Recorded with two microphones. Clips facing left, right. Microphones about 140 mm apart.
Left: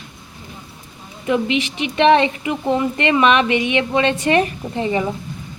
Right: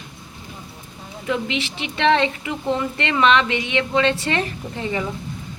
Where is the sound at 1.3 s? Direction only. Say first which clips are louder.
Left 5 dB; 15° left (ahead or behind).